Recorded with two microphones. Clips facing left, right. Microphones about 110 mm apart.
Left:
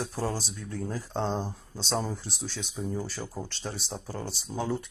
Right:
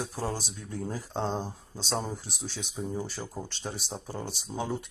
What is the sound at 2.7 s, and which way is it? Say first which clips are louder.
Speech: even; 20° right (ahead or behind).